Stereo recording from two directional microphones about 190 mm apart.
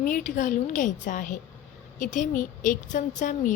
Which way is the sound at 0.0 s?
45° left (ahead or behind).